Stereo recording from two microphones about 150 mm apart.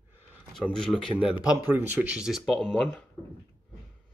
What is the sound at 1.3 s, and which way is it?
Speech, 25° left (ahead or behind).